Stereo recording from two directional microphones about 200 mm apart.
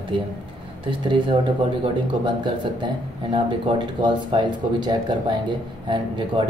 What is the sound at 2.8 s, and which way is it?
Speech, 25° right (ahead or behind).